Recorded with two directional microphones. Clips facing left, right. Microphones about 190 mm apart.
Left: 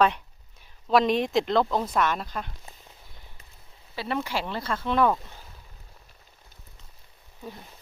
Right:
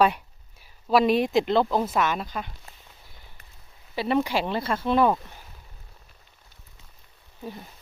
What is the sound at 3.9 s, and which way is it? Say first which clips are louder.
Speech: right 6 dB; 15° right (ahead or behind).